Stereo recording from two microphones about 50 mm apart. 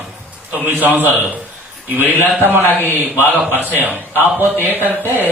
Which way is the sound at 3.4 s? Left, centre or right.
Right.